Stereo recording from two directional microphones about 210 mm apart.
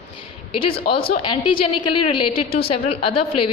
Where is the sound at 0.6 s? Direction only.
25° left (ahead or behind).